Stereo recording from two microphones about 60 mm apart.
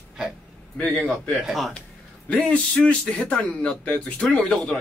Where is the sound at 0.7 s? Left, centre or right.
Centre.